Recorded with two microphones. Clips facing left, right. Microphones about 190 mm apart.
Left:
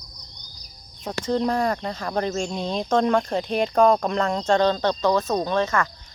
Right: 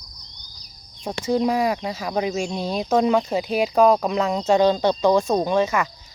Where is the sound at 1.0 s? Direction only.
10° right (ahead or behind).